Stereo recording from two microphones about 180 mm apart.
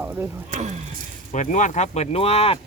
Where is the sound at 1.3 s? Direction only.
45° left (ahead or behind).